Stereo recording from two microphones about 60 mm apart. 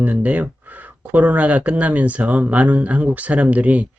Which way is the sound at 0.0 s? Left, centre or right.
Right.